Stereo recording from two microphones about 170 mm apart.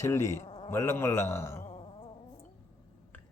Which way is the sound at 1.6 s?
35° left (ahead or behind).